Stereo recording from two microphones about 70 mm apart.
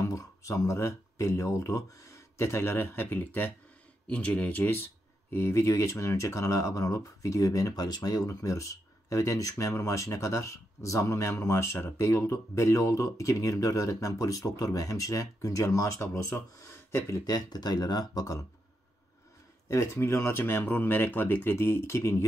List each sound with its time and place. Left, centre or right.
0.0 s speech: left
16.5 s a sound: left
17.3 s speech: left
19.7 s speech: left